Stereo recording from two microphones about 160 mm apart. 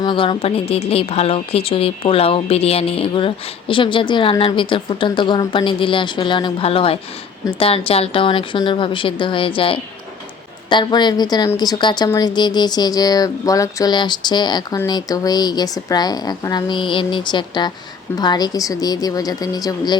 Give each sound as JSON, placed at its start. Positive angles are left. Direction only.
{"t": 0.0, "sound": "a woman's voice", "side_deg": 30}